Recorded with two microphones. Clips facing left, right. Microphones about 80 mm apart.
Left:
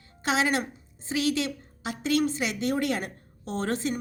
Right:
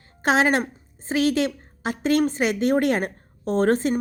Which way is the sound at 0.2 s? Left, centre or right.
Right.